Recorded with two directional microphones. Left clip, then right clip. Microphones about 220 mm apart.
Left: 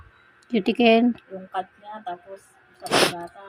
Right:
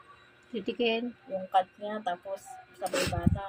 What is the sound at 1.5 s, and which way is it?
Speech, 50° right (ahead or behind).